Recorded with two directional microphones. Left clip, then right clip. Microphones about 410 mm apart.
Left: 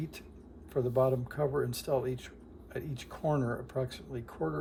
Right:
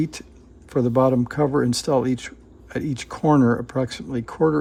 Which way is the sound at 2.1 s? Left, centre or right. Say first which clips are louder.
Right 11 dB; centre.